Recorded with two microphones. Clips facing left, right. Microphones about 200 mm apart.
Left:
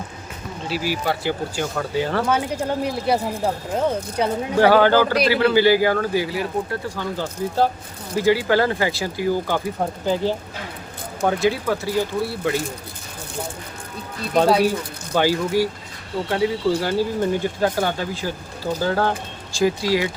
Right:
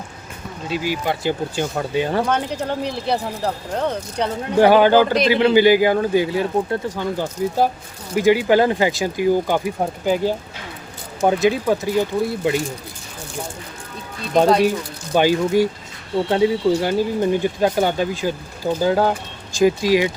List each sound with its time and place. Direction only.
0.7 s speech: 20° right (ahead or behind)
2.3 s speech: 10° left (ahead or behind)
4.5 s speech: 15° right (ahead or behind)
15.1 s speech: 20° right (ahead or behind)